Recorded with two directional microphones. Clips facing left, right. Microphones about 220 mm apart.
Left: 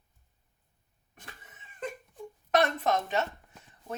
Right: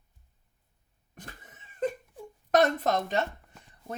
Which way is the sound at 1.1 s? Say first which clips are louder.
Right 4 dB; 40° right (ahead or behind).